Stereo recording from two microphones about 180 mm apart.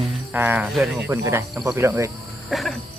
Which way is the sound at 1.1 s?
15° right (ahead or behind).